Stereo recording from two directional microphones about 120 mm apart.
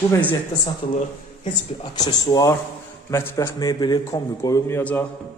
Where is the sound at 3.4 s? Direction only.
30° left (ahead or behind).